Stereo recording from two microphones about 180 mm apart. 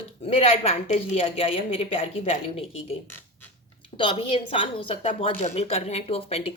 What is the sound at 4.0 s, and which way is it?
A woman's voice, 30° left (ahead or behind).